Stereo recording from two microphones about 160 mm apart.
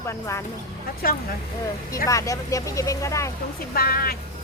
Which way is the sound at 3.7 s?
70° left (ahead or behind).